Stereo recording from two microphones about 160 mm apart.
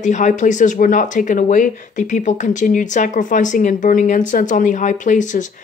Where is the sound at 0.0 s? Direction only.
50° left (ahead or behind).